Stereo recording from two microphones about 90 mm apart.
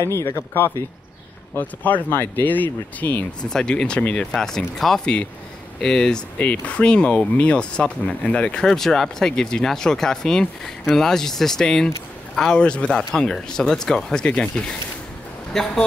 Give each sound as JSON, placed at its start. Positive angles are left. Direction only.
{"t": 0.0, "sound": "speech", "side_deg": 30}
{"t": 3.4, "sound": "speech", "side_deg": 10}